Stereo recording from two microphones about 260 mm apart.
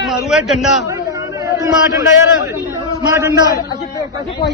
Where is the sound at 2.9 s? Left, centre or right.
Centre.